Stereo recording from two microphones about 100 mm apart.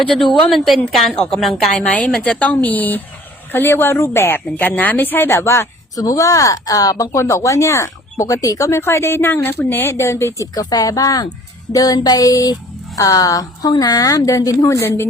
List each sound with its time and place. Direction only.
0.9 s a woman's voice: centre (ahead or behind); by 15.0 s 25° left (ahead or behind)